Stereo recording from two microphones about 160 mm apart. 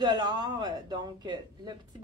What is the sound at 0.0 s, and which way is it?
A woman's voice, 25° right (ahead or behind).